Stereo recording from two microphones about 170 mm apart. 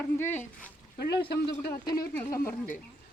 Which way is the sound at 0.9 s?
65° left (ahead or behind).